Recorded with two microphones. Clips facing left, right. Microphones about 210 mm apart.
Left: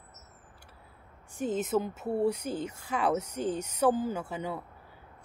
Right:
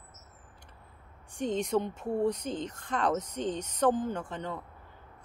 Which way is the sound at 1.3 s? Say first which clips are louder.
Even; 5° left (ahead or behind).